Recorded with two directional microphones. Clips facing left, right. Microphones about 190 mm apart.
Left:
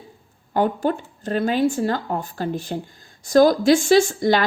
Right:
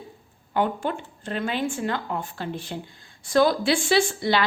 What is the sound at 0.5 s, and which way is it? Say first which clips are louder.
Speech: left 4 dB; 40° left (ahead or behind).